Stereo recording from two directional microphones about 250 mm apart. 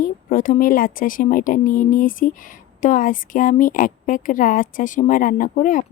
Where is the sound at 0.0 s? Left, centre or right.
Left.